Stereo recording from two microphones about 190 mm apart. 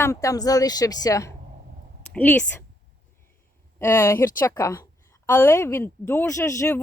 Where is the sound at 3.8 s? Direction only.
15° left (ahead or behind).